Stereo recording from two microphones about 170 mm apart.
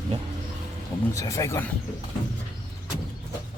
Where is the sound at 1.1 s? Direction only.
15° left (ahead or behind).